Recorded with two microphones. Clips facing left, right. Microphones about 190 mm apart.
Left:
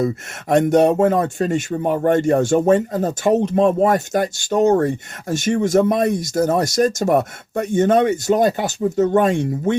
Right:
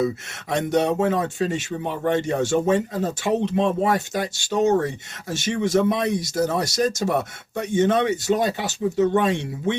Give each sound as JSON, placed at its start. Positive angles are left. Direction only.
{"t": 0.0, "sound": "speech", "side_deg": 50}